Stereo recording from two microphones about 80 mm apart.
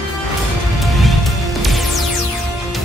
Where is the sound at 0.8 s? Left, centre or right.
Centre.